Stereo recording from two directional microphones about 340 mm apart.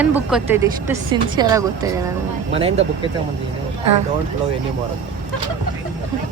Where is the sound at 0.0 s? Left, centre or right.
Centre.